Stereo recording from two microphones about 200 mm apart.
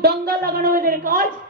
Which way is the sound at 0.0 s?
50° right (ahead or behind).